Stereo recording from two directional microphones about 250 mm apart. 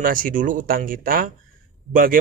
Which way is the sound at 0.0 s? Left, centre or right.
Right.